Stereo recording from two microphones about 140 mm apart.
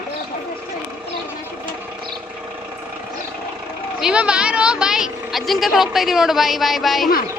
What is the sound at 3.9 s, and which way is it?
Speech, 5° right (ahead or behind).